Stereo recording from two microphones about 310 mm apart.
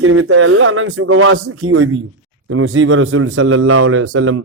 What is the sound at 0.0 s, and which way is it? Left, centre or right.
A man's voice, right.